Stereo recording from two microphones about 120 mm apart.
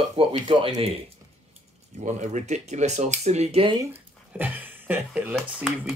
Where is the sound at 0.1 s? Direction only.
50° right (ahead or behind).